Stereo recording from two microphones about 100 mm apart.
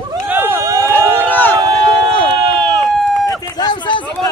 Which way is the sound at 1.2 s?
20° left (ahead or behind).